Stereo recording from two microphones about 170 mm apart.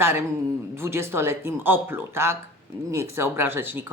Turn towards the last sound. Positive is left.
turn(degrees=-10)  # may be behind; listen again after turning